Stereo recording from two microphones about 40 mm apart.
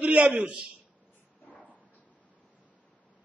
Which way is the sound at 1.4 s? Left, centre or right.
Left.